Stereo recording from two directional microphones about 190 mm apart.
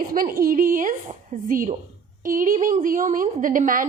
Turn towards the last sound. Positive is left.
turn(degrees=-45)  # may be behind; listen again after turning